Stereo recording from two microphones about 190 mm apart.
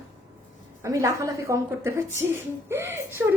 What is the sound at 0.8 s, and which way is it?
A woman's voice, 15° right (ahead or behind).